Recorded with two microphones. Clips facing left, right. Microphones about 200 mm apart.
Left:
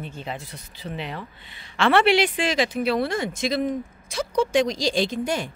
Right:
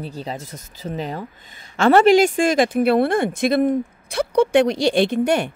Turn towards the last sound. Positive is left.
turn(degrees=-65)  # may be behind; listen again after turning